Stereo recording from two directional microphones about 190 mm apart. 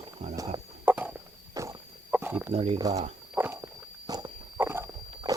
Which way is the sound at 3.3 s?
10° right (ahead or behind).